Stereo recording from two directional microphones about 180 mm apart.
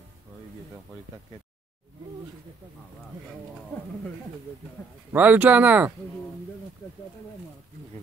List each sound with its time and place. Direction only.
5.1 s speech: 10° right (ahead or behind)